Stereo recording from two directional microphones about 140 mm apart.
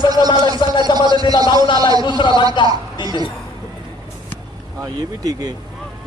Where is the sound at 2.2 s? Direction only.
35° left (ahead or behind).